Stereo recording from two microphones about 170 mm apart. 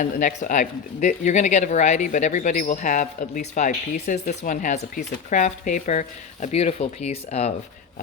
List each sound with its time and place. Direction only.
0.0 s speech: 50° left (ahead or behind)